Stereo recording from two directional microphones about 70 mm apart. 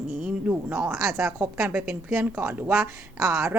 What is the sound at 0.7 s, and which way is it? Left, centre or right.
A woman's voice, right.